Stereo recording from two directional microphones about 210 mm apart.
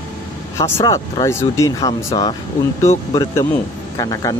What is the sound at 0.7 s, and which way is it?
Speech, 20° left (ahead or behind).